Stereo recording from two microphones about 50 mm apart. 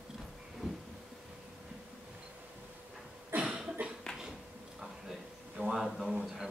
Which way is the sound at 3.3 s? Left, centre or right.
Right.